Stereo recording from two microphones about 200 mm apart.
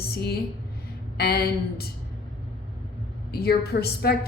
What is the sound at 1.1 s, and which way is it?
Speech, 50° left (ahead or behind).